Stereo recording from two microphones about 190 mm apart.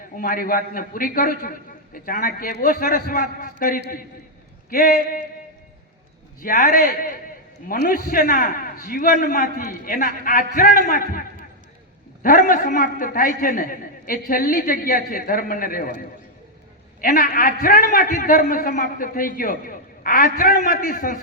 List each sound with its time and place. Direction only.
0.2 s a man's voice: 50° left (ahead or behind)
6.4 s a man's voice: 45° left (ahead or behind)
17.0 s a man's voice: 50° left (ahead or behind)